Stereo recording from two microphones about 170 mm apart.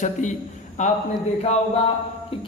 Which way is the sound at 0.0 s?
45° left (ahead or behind).